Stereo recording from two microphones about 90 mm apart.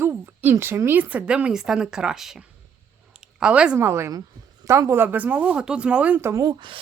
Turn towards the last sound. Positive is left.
turn(degrees=-60)  # may be behind; listen again after turning